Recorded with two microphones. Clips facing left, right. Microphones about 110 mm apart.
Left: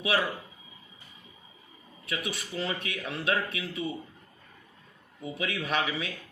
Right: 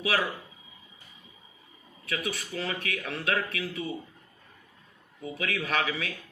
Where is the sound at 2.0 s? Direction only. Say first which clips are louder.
Right 2 dB; 20° left (ahead or behind).